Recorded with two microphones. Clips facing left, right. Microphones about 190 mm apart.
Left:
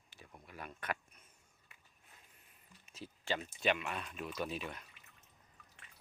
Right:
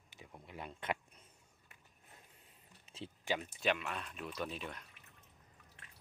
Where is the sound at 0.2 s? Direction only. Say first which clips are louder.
Right 2 dB; 20° right (ahead or behind).